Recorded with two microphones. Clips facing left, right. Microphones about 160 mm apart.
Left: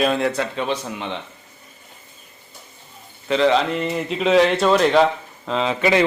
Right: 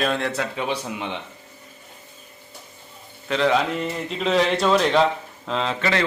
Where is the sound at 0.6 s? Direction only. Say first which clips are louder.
Left 2 dB; 10° right (ahead or behind).